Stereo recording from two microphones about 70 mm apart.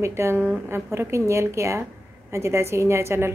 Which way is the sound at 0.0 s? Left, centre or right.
Right.